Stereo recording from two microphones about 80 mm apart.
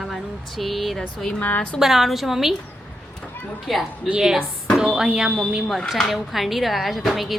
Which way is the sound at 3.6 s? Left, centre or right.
Centre.